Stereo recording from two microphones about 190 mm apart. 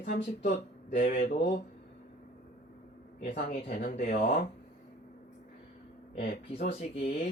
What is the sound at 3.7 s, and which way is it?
Speech, 40° left (ahead or behind).